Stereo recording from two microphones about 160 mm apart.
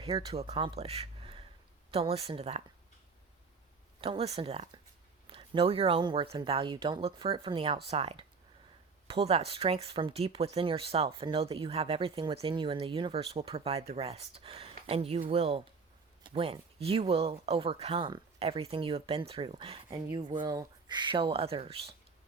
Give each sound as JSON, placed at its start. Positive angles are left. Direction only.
{"t": 0.0, "sound": "speech", "side_deg": -35}
{"t": 4.0, "sound": "speech", "side_deg": -35}
{"t": 19.9, "sound": "speech", "side_deg": -25}